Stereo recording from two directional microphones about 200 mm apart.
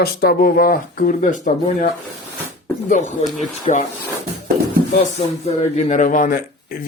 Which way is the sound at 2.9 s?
35° left (ahead or behind).